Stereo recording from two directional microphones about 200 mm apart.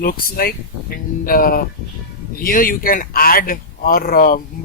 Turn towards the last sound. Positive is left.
turn(degrees=45)  # may be behind; listen again after turning